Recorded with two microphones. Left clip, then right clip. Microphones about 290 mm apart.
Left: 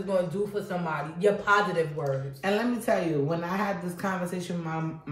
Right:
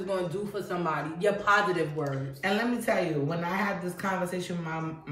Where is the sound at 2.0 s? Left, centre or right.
Centre.